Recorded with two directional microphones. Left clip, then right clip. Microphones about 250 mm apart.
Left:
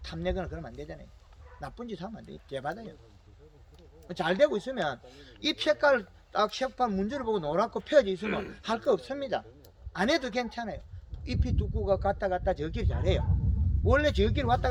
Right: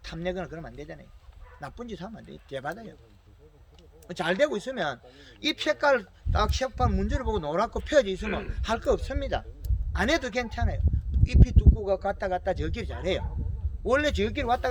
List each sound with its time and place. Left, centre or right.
0.0 s speech: centre
4.1 s speech: centre